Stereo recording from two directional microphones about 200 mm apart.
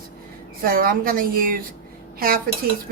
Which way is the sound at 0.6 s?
45° right (ahead or behind).